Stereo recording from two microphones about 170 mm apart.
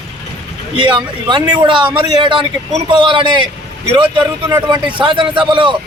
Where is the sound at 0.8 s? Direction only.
30° right (ahead or behind).